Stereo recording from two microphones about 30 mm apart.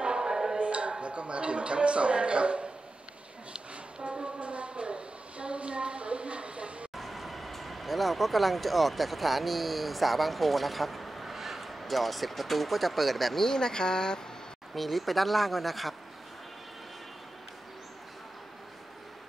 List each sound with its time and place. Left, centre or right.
0.0 s music: right
0.6 s a sound: right
1.0 s speech: right
3.5 s a sound: right
7.0 s speech: centre
13.4 s speech: left
14.8 s speech: centre